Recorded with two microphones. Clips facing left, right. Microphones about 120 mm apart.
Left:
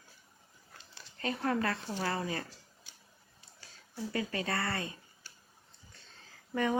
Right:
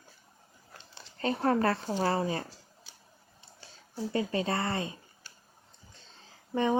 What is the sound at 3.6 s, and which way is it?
Speech, 25° right (ahead or behind).